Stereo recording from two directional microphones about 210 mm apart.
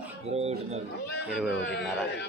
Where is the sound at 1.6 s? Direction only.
55° left (ahead or behind).